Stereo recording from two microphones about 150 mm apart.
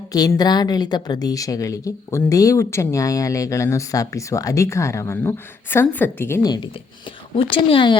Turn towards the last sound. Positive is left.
turn(degrees=35)  # may be behind; listen again after turning